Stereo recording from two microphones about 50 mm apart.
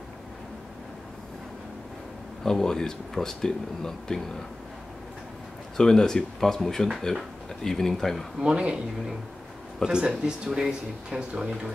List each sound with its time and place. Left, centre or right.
2.4 s speech: centre
5.8 s speech: centre
8.4 s speech: centre
9.8 s speech: centre